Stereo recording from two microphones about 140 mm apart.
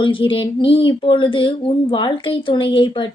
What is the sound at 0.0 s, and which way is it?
Speech, 35° left (ahead or behind).